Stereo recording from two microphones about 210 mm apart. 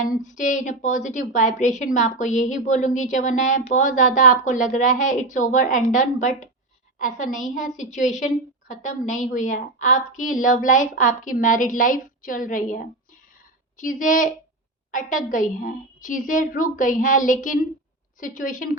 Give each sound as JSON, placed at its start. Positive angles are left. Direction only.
{"t": 0.2, "sound": "a woman's voice", "side_deg": 35}